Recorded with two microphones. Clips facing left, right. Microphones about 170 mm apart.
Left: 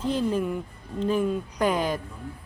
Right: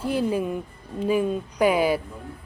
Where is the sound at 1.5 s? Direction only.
10° right (ahead or behind).